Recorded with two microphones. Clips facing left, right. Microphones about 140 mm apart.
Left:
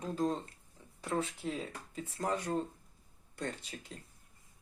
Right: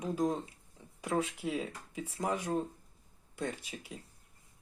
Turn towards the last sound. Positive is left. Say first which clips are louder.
# right 2 dB
turn(degrees=-10)  # may be behind; listen again after turning